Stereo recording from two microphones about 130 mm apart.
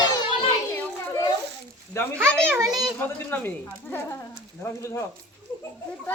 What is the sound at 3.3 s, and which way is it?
A woman's voice, 15° left (ahead or behind).